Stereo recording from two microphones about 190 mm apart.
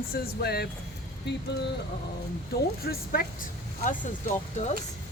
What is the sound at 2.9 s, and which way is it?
Speech, 55° left (ahead or behind).